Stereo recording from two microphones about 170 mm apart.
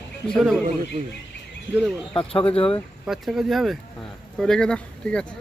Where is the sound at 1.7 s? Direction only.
Centre (ahead or behind).